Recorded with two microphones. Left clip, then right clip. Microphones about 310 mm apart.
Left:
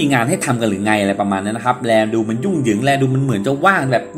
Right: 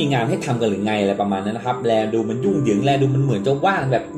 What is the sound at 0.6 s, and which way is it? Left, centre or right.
A man's voice, left.